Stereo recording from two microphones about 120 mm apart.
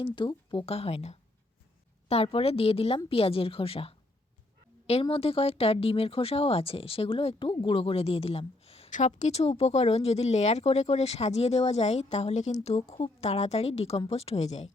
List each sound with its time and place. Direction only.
0.0 s speech: 45° left (ahead or behind)
5.0 s speech: 50° left (ahead or behind)
8.9 s a woman's voice: 90° left; by 14.7 s 70° left (ahead or behind)